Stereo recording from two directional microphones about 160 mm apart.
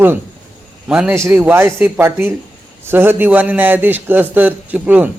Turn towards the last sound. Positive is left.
turn(degrees=-10)  # may be behind; listen again after turning